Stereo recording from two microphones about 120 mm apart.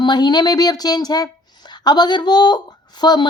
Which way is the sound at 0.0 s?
40° left (ahead or behind).